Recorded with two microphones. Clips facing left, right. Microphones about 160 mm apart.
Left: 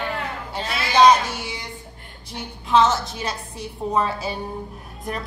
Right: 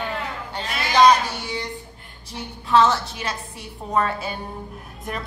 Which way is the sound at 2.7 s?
25° left (ahead or behind).